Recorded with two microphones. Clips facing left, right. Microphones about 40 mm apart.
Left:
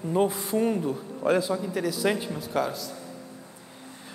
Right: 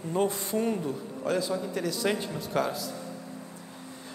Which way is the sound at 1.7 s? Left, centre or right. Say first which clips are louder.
Left 3 dB; centre.